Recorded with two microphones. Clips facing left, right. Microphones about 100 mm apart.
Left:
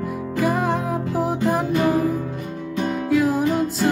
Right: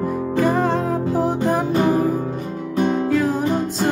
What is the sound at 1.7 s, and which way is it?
Music, 30° right (ahead or behind).